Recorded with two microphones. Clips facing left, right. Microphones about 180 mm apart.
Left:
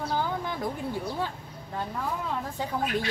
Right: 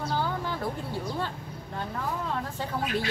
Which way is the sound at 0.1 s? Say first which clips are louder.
Even; 15° left (ahead or behind).